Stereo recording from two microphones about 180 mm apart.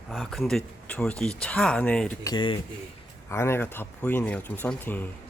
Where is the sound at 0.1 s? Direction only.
Centre (ahead or behind).